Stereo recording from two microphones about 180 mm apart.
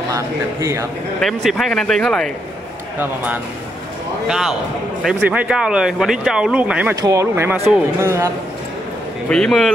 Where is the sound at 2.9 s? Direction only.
10° right (ahead or behind).